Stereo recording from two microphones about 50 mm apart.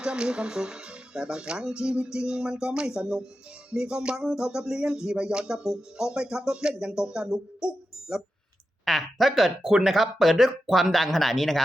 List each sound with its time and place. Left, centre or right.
0.0 s music: centre
8.8 s speech: centre
9.6 s music: centre
9.9 s speech: centre